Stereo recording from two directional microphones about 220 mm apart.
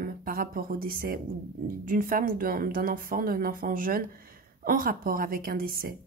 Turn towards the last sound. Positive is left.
turn(degrees=-40)  # may be behind; listen again after turning